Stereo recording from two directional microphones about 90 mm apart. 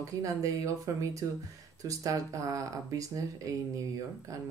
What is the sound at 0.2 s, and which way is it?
Speech, 40° right (ahead or behind).